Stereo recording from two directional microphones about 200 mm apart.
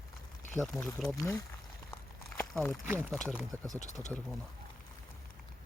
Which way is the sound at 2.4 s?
10° left (ahead or behind).